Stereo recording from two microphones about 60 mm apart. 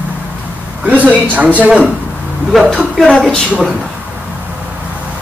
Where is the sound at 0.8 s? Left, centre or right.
Right.